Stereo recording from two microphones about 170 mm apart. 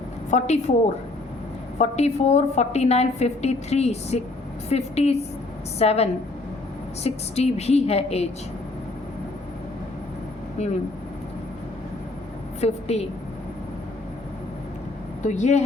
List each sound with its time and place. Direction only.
0.3 s a woman's voice: 40° left (ahead or behind)
1.8 s a woman's voice: 40° left (ahead or behind)
10.6 s a woman's voice: 40° left (ahead or behind)
12.5 s a woman's voice: 40° left (ahead or behind)
15.2 s a woman's voice: 45° left (ahead or behind)